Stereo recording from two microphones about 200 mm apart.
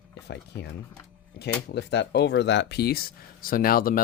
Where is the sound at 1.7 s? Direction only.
55° left (ahead or behind).